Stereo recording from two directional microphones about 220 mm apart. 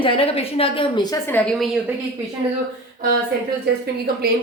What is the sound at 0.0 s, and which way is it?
A woman's voice, 25° left (ahead or behind).